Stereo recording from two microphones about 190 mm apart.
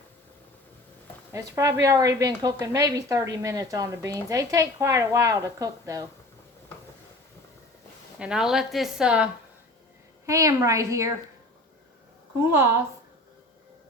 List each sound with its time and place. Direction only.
1.3 s a woman's voice: 15° right (ahead or behind)
8.2 s a woman's voice: 5° right (ahead or behind)
10.2 s a woman's voice: 15° right (ahead or behind)
12.4 s a woman's voice: 15° right (ahead or behind)